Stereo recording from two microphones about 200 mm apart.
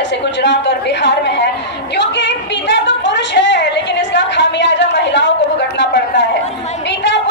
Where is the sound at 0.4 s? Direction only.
60° left (ahead or behind).